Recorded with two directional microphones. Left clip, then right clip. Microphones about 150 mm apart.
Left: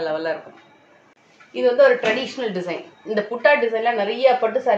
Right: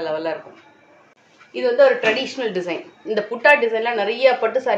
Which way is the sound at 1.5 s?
15° right (ahead or behind).